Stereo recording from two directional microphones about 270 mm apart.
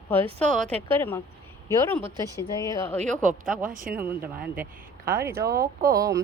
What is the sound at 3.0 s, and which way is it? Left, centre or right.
Speech, right.